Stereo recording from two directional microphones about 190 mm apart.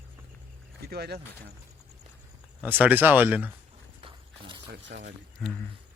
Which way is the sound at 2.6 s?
10° right (ahead or behind).